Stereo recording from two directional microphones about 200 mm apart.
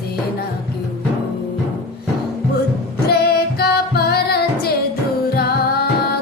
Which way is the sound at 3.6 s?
50° left (ahead or behind).